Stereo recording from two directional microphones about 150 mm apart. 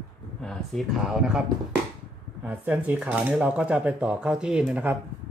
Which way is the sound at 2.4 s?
10° right (ahead or behind).